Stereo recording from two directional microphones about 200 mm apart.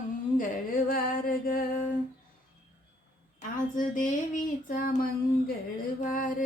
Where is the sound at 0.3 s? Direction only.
45° left (ahead or behind).